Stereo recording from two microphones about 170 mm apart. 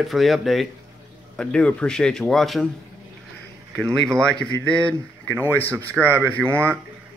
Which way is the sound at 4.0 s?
5° left (ahead or behind).